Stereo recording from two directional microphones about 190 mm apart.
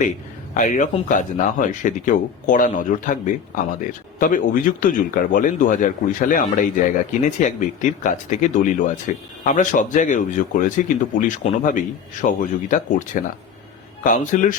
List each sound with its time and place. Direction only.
0.5 s speech: 40° left (ahead or behind)